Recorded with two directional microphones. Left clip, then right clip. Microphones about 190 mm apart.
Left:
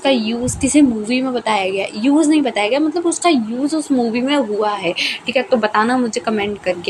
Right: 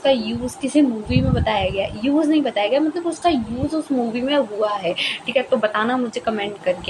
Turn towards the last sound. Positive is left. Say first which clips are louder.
# left 3 dB
turn(degrees=25)  # may be behind; listen again after turning